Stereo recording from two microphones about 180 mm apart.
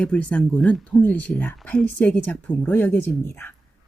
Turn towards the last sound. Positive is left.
turn(degrees=10)  # may be behind; listen again after turning